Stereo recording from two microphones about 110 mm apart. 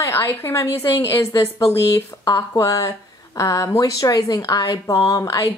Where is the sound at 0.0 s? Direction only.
25° left (ahead or behind).